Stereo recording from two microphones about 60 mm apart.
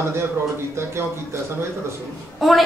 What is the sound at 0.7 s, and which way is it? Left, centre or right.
Speech, right.